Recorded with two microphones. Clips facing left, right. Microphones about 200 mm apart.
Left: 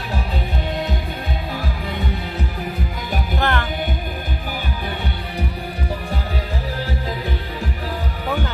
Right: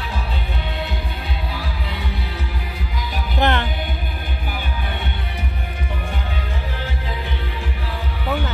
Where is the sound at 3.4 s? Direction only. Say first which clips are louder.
Right 3 dB; 20° right (ahead or behind).